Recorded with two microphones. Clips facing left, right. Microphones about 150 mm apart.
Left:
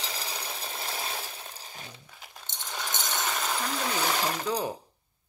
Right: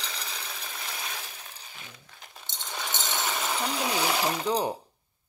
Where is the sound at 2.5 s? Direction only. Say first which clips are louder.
Even; 10° left (ahead or behind).